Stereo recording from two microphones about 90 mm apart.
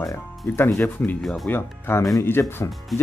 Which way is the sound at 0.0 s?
30° left (ahead or behind).